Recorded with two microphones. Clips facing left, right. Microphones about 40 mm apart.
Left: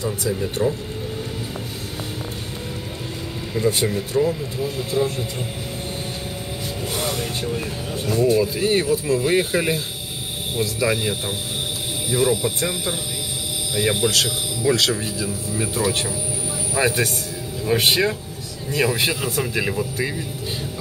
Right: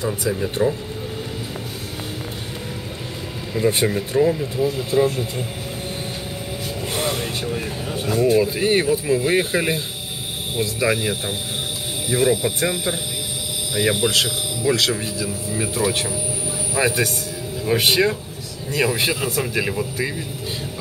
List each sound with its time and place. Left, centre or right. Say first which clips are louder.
0.0 s speech: right 1 dB; right
3.7 s speech: right 2 dB; right
6.9 s music: right 2 dB; right
7.9 s speech: right 1 dB; right; by 9.8 s centre
10.8 s speech: right 2 dB; centre
13.7 s speech: right 1 dB; centre
14.6 s speech: even; centre